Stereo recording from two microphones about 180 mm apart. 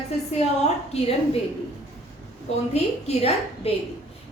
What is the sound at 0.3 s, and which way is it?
A woman's voice, 35° left (ahead or behind).